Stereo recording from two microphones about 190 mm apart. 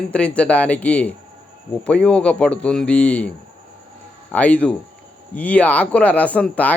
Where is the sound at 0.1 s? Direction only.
5° left (ahead or behind).